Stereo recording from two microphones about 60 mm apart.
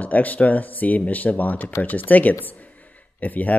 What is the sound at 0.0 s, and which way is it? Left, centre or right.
Speech, left.